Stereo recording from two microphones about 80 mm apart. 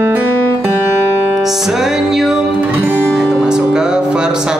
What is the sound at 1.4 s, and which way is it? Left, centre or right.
Music, centre.